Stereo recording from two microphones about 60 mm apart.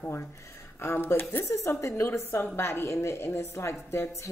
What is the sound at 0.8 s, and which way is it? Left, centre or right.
A woman's voice, left.